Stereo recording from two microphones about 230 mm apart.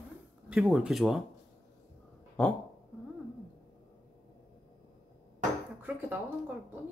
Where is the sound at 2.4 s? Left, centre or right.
Centre.